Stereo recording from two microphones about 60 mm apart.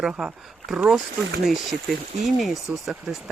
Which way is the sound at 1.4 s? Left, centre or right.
Centre.